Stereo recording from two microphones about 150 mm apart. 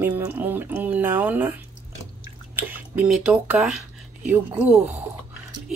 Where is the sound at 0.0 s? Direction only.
10° right (ahead or behind).